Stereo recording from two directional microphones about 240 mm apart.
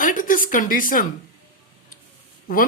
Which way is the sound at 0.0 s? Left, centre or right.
Left.